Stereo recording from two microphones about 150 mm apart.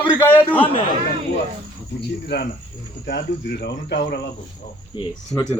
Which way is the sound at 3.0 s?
90° left.